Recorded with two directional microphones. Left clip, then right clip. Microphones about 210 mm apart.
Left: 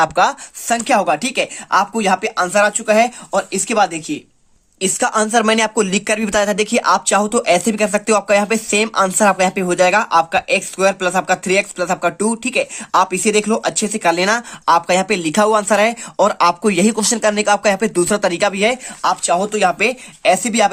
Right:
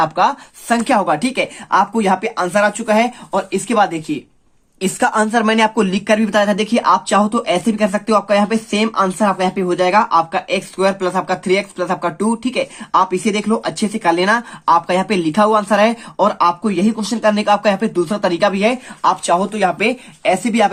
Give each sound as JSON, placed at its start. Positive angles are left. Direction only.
{"t": 0.0, "sound": "a woman's voice", "side_deg": 35}
{"t": 0.8, "sound": "a woman's voice", "side_deg": 20}